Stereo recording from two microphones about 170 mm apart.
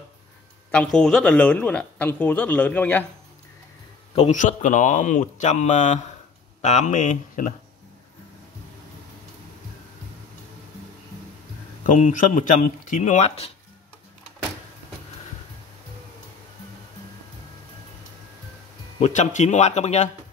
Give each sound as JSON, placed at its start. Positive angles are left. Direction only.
{"t": 0.7, "sound": "a man's voice", "side_deg": 5}
{"t": 4.1, "sound": "speech", "side_deg": 40}
{"t": 11.8, "sound": "speech", "side_deg": 50}
{"t": 18.9, "sound": "speech", "side_deg": 45}